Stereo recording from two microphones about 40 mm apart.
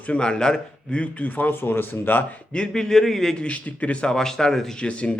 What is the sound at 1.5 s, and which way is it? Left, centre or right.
Speech, left.